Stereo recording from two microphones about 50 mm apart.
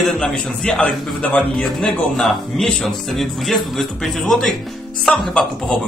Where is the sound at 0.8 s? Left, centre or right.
Left.